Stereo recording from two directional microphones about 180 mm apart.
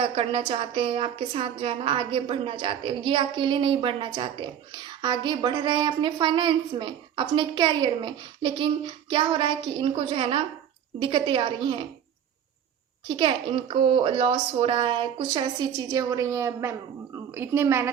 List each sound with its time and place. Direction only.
0.0 s a woman's voice: 30° right (ahead or behind)
13.1 s a woman's voice: 30° right (ahead or behind)